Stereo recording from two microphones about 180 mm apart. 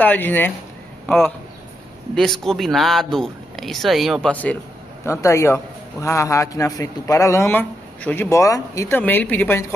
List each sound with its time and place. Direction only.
0.0 s a man's voice: 10° left (ahead or behind)